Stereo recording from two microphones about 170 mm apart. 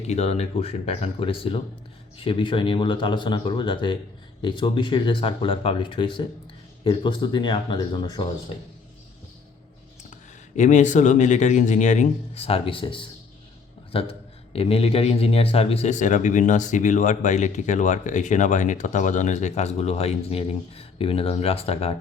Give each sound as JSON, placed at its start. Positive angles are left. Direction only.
{"t": 0.1, "sound": "a man's voice", "side_deg": 40}
{"t": 10.1, "sound": "a man's voice", "side_deg": 45}